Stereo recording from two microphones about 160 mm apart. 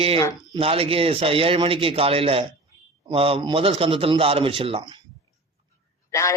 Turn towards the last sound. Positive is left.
turn(degrees=20)  # may be behind; listen again after turning